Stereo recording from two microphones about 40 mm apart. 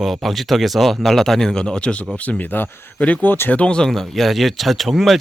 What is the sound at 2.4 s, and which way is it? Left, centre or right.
Speech, left.